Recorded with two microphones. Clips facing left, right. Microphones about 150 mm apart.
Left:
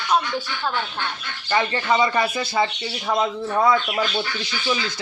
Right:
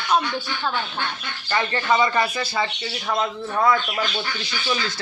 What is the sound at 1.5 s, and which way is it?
Speech, 20° left (ahead or behind).